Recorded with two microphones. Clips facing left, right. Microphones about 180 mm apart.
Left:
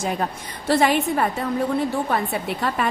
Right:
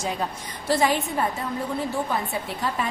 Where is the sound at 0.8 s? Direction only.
65° left (ahead or behind).